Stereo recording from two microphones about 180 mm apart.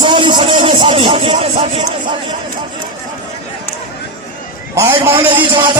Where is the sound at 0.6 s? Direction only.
30° right (ahead or behind).